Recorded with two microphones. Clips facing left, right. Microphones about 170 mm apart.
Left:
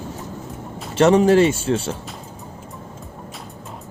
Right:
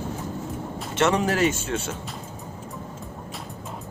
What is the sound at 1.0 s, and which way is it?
Speech, 30° left (ahead or behind).